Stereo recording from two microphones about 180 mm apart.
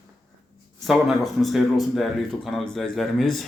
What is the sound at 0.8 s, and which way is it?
Speech, centre (ahead or behind).